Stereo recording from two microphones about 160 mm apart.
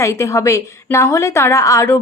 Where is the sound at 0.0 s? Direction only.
20° left (ahead or behind).